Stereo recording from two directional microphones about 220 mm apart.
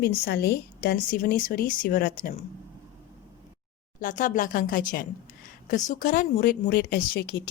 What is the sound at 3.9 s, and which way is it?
Speech, 35° left (ahead or behind).